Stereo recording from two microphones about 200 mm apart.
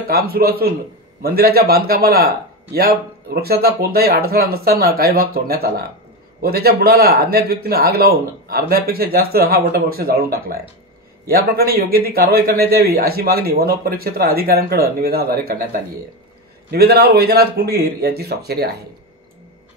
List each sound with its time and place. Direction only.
0.1 s speech: 50° right (ahead or behind)